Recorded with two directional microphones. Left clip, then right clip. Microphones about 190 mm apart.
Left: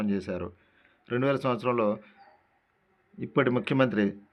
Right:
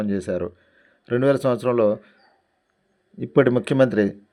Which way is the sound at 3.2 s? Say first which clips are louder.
Right 8 dB; 35° right (ahead or behind).